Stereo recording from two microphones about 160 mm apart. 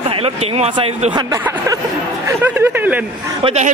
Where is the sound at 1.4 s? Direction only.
20° right (ahead or behind).